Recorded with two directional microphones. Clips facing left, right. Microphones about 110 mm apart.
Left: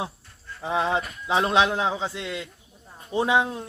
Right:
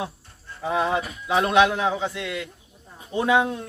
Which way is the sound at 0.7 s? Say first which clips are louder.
Right 1 dB; 25° left (ahead or behind).